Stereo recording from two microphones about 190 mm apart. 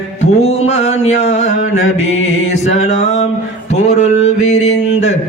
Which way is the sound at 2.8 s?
35° left (ahead or behind).